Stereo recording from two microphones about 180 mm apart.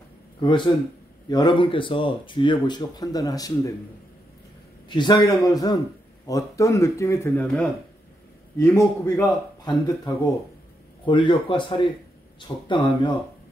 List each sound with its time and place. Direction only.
0.4 s speech: 25° left (ahead or behind)
4.8 s speech: 25° left (ahead or behind)